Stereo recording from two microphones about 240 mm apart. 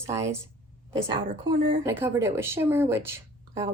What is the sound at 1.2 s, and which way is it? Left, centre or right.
Speech, right.